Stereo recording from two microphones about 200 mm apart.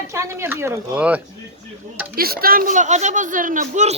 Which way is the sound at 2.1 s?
50° right (ahead or behind).